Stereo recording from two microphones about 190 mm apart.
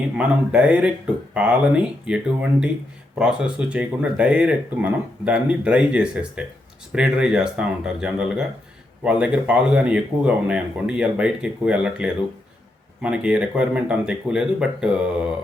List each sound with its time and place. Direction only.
0.2 s speech: 5° right (ahead or behind)